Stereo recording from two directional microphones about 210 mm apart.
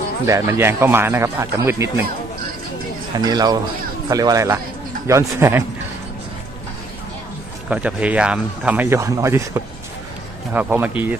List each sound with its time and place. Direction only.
0.3 s speech: 10° right (ahead or behind)
3.2 s a man's voice: 20° right (ahead or behind)
7.7 s speech: 5° right (ahead or behind)